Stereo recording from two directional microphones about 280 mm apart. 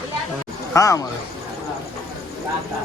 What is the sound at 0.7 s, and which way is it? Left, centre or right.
Speech, centre.